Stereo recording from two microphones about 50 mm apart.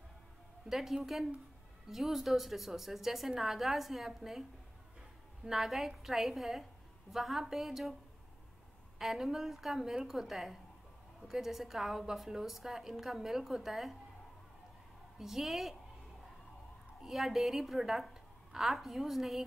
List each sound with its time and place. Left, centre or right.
0.7 s a woman's voice: centre
8.9 s a woman's voice: centre
15.1 s a woman's voice: centre
17.0 s a woman's voice: centre